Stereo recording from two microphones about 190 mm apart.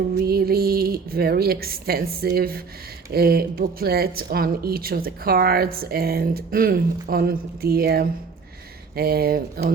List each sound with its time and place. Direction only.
0.2 s a woman's voice: 55° right (ahead or behind)